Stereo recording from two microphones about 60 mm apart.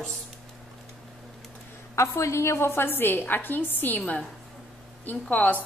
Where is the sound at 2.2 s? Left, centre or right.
Left.